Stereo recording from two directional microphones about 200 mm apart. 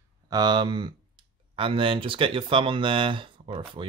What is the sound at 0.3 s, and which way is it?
Speech, 20° right (ahead or behind).